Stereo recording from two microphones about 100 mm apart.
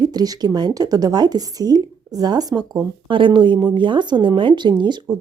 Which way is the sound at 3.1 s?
55° right (ahead or behind).